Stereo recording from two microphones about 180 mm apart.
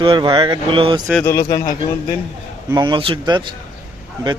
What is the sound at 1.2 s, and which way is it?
Speech, 15° left (ahead or behind).